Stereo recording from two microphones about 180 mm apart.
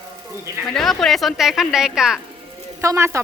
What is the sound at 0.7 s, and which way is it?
A woman's voice, centre (ahead or behind).